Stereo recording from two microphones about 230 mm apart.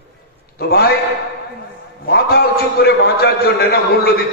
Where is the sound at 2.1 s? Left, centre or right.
Left.